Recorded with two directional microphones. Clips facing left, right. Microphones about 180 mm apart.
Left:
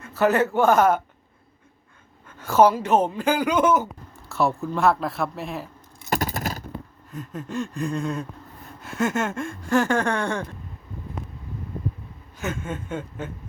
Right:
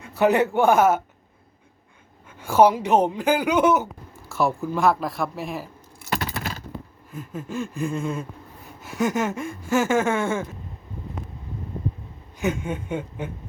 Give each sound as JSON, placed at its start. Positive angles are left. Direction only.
{"t": 0.0, "sound": "speech", "side_deg": -15}
{"t": 2.4, "sound": "speech", "side_deg": -10}
{"t": 4.3, "sound": "gasp", "side_deg": 0}
{"t": 6.1, "sound": "biting", "side_deg": 45}
{"t": 7.1, "sound": "gasp", "side_deg": 0}
{"t": 12.4, "sound": "speech", "side_deg": -15}